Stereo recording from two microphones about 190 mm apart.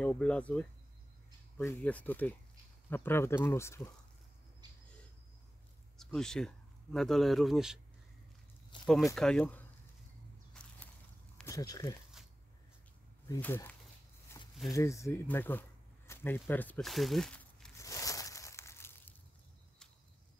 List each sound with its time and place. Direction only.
0.0 s speech: 5° left (ahead or behind)
5.9 s speech: 5° left (ahead or behind)
8.7 s speech: 25° left (ahead or behind)
9.1 s speech: 5° left (ahead or behind)
10.5 s a sound: 5° left (ahead or behind)
11.4 s speech: 20° left (ahead or behind)
13.3 s speech: 15° left (ahead or behind)
14.3 s a sound: 20° left (ahead or behind)
14.7 s speech: 15° left (ahead or behind)
17.7 s a sound: 15° left (ahead or behind)